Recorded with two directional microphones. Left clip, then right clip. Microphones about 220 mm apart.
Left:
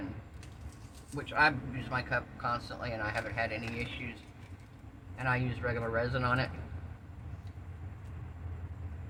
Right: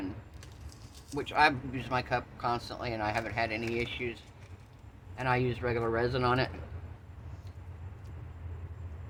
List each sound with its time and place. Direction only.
1.1 s a man's voice: 55° right (ahead or behind)